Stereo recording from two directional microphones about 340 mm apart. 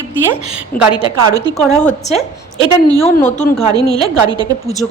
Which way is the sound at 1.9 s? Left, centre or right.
Centre.